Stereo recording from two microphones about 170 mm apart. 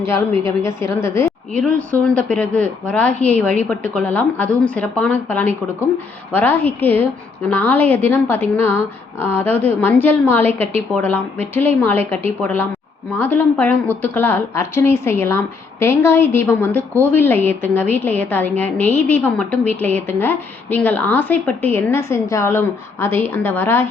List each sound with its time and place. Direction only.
0.0 s a woman's voice: 15° left (ahead or behind)